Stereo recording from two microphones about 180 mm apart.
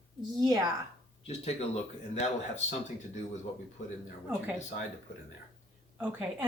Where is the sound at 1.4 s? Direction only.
40° left (ahead or behind).